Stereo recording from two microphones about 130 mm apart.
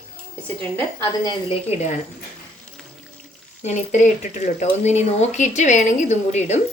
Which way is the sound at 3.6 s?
65° left (ahead or behind).